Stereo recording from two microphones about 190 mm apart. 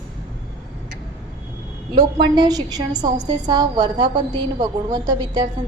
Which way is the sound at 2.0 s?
25° right (ahead or behind).